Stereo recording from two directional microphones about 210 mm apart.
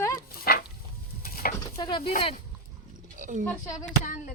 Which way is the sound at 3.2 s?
35° right (ahead or behind).